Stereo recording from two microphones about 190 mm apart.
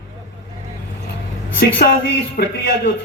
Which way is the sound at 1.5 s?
60° left (ahead or behind).